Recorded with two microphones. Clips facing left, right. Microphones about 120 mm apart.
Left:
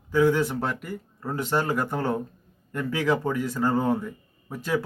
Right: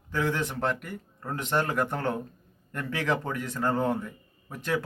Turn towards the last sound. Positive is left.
turn(degrees=5)  # may be behind; listen again after turning